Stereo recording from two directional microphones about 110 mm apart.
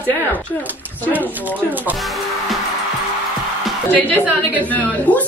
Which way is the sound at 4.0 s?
15° left (ahead or behind).